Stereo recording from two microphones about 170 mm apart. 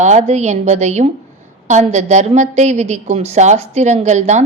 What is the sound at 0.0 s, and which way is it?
A woman's voice, 45° right (ahead or behind).